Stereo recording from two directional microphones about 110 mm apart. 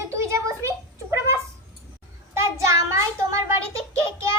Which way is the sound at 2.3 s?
25° right (ahead or behind).